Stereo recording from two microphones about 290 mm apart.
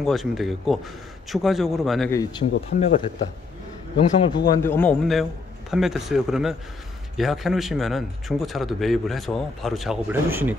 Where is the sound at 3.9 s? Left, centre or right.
Centre.